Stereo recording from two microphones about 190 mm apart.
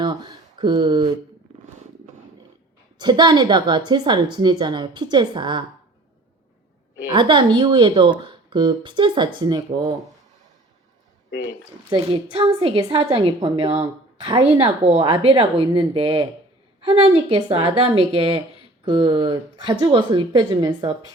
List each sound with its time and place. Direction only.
0.0 s a sound: 25° right (ahead or behind)
3.0 s a woman's voice: 20° right (ahead or behind)
7.1 s a woman's voice: 25° right (ahead or behind)
11.9 s a woman's voice: 25° right (ahead or behind)